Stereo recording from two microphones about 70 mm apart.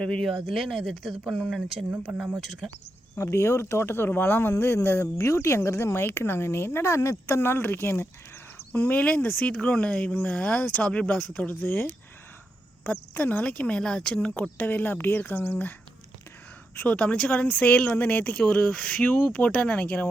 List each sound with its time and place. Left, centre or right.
0.0 s speech: centre
0.3 s speech: centre
2.4 s speech: centre
3.2 s speech: left
13.1 s speech: left
13.4 s speech: centre
14.6 s speech: left
16.7 s speech: left